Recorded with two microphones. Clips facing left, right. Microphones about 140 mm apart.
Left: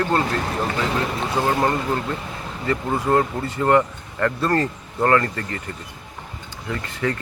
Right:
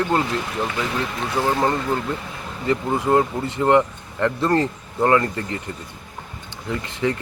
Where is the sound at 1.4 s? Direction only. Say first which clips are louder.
Even; 15° left (ahead or behind).